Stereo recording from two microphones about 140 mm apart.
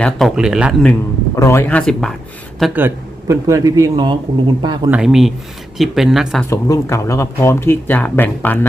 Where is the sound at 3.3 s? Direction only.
20° right (ahead or behind).